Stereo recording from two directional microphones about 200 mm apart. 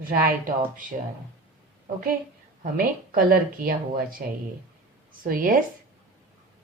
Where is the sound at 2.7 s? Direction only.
45° right (ahead or behind).